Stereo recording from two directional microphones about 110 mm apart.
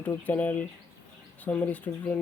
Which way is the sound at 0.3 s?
15° left (ahead or behind).